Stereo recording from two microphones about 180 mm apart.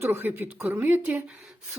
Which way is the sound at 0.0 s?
10° right (ahead or behind).